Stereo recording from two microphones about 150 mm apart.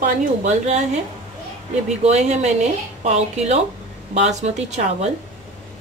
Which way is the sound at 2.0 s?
50° right (ahead or behind).